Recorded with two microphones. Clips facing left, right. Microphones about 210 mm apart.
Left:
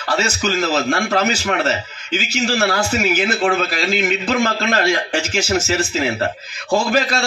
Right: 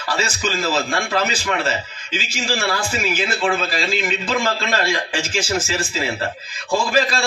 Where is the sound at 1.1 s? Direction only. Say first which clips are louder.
Left 3 dB; 45° left (ahead or behind).